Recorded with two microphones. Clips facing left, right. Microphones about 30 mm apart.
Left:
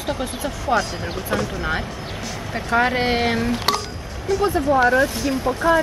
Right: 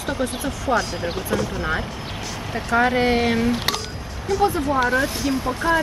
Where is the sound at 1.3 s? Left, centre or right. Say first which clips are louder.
Left 1 dB; left.